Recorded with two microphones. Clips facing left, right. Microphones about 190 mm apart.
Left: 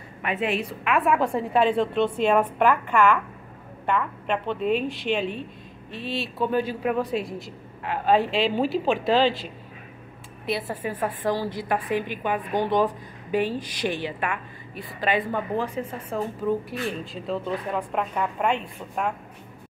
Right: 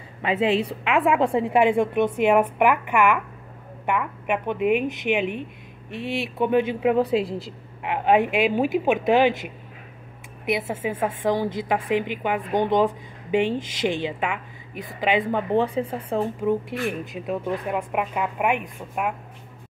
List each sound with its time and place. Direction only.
0.2 s a woman's voice: 25° right (ahead or behind)
10.4 s a woman's voice: 20° right (ahead or behind)